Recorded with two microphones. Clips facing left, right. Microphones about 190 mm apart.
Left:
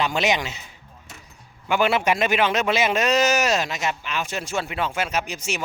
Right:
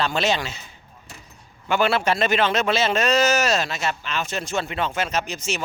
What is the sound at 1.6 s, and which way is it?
A man's voice, 15° left (ahead or behind).